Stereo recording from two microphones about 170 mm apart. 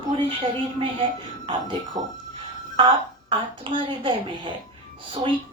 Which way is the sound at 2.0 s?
25° right (ahead or behind).